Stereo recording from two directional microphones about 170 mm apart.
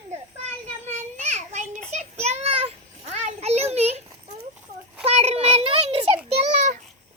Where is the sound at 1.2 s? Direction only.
45° right (ahead or behind).